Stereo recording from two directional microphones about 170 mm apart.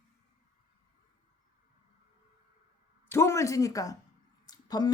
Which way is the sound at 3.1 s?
15° left (ahead or behind).